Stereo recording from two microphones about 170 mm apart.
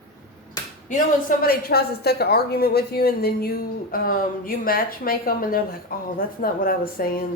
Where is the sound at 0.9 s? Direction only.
55° left (ahead or behind).